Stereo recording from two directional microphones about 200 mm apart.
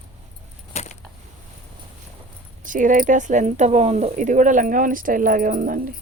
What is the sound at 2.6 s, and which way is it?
Speech, 40° right (ahead or behind).